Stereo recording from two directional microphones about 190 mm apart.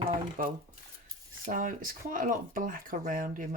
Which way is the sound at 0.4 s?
45° right (ahead or behind).